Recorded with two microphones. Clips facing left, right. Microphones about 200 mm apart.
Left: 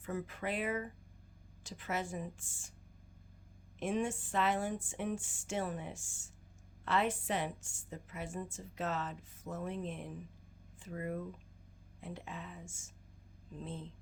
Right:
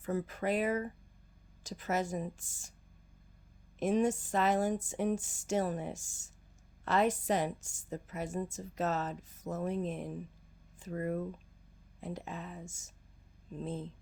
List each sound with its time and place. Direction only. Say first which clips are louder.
0.0 s a woman's voice: right 5 dB; 40° right (ahead or behind)
3.8 s a woman's voice: right 6 dB; 40° right (ahead or behind)